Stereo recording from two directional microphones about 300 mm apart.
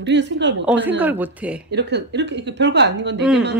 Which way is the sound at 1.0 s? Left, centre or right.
Centre.